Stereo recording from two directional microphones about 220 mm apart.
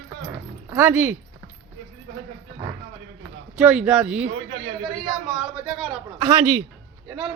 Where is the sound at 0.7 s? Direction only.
10° right (ahead or behind).